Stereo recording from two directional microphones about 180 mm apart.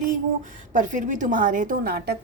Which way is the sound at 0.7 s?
45° right (ahead or behind).